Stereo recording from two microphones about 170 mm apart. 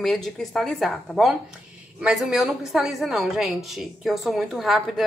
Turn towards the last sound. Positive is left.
turn(degrees=0)  # may be behind; listen again after turning